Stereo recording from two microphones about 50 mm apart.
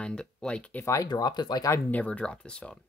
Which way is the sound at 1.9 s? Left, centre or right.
Left.